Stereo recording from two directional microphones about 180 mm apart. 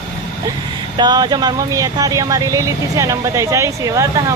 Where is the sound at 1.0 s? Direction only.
25° right (ahead or behind).